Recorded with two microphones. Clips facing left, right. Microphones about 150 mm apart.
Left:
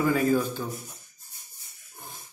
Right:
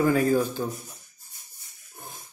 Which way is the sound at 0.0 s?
45° right (ahead or behind).